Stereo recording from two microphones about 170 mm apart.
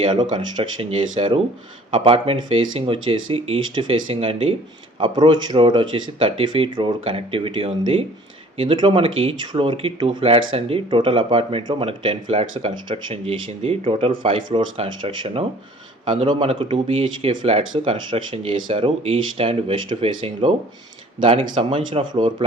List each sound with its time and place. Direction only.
0.0 s speech: 25° right (ahead or behind)